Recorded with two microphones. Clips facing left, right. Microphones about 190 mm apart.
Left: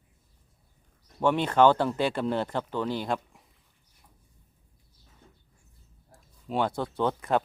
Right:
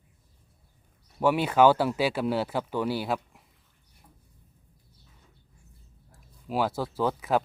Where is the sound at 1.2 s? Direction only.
5° right (ahead or behind).